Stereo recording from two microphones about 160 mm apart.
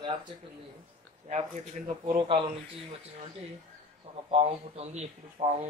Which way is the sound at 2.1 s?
35° right (ahead or behind).